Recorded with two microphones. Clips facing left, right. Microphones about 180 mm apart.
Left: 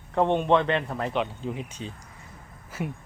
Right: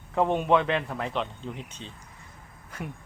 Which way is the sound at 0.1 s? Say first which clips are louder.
Left 1 dB; 5° right (ahead or behind).